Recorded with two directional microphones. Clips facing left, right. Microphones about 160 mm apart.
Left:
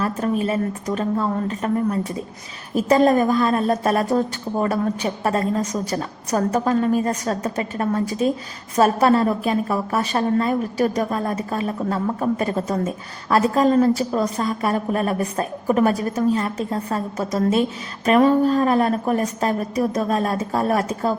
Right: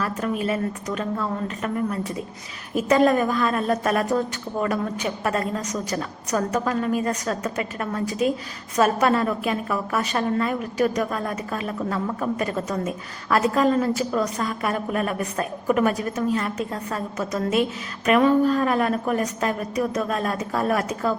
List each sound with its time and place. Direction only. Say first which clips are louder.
0.0 s a woman's voice: left 3 dB; 30° left (ahead or behind)